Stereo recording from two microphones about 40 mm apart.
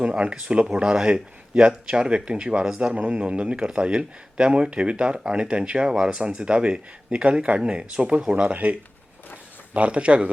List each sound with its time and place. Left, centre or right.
0.2 s speech: right
2.9 s speech: right
9.7 s speech: right